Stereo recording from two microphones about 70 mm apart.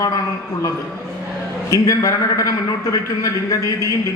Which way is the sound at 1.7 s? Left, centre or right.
Left.